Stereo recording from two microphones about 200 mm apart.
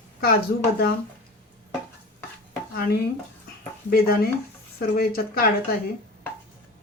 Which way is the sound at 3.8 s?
50° left (ahead or behind).